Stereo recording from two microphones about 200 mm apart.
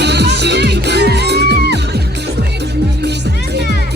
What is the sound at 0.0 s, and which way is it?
Music, 55° right (ahead or behind).